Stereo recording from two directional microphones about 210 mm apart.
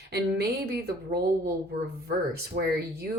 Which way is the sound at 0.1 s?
50° right (ahead or behind).